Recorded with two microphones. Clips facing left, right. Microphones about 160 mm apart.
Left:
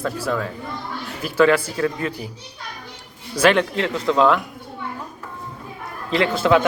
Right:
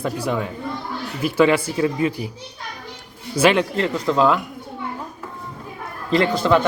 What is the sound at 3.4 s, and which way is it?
A man's voice, 10° right (ahead or behind).